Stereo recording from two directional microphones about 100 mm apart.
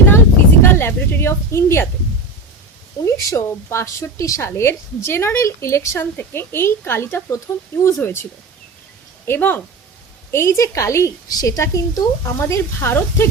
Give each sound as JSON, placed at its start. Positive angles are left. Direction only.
{"t": 0.6, "sound": "speech", "side_deg": 20}
{"t": 3.0, "sound": "a woman's voice", "side_deg": 30}